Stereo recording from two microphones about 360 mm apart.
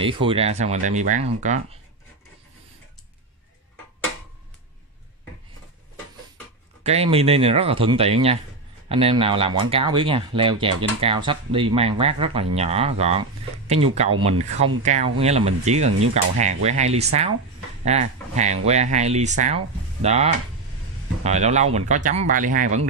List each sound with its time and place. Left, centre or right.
0.0 s speech: centre
6.8 s speech: centre